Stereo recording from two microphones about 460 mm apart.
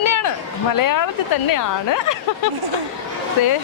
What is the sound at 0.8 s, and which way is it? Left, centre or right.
A woman's voice, left.